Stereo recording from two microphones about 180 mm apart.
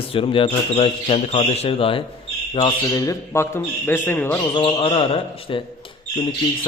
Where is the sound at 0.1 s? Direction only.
30° left (ahead or behind).